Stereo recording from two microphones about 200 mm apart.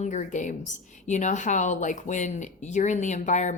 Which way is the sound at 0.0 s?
40° left (ahead or behind).